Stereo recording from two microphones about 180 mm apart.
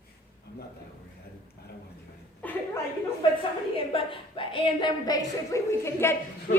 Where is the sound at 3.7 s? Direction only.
30° left (ahead or behind); by 6.2 s 15° left (ahead or behind).